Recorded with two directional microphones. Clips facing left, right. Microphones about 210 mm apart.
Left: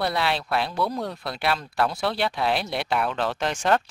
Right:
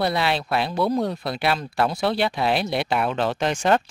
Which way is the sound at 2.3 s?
5° right (ahead or behind).